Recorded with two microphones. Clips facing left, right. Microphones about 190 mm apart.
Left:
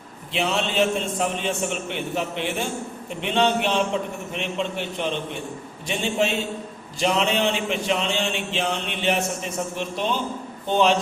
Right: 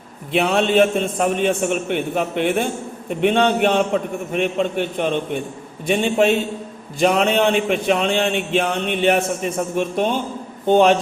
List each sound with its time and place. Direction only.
0.3 s a man's voice: 55° right (ahead or behind)